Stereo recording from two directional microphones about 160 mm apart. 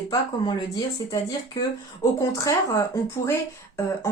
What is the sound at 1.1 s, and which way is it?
Speech, 25° left (ahead or behind).